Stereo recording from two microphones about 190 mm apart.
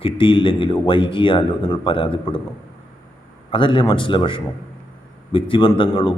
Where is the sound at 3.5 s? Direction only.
25° left (ahead or behind).